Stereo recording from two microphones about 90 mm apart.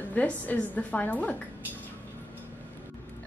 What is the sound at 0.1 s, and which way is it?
A woman's voice, 15° left (ahead or behind).